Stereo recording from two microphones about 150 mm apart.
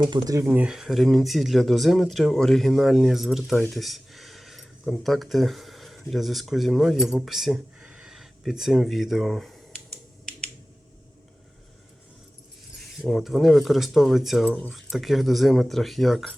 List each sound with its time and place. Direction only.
0.1 s speech: 25° right (ahead or behind)
0.4 s speech: 5° right (ahead or behind)
13.0 s speech: centre (ahead or behind)
14.4 s speech: 10° left (ahead or behind)
14.7 s speech: centre (ahead or behind)